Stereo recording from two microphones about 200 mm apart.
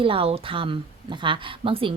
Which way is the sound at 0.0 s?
25° right (ahead or behind).